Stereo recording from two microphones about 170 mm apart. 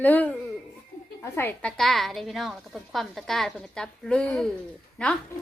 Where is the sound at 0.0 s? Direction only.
10° left (ahead or behind).